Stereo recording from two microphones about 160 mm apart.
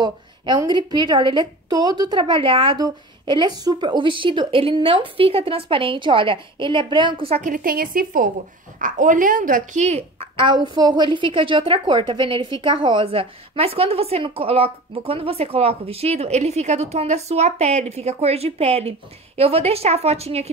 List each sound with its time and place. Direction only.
0.0 s a woman's voice: 25° right (ahead or behind)
7.5 s a woman's voice: 65° right (ahead or behind); by 20.4 s 40° right (ahead or behind)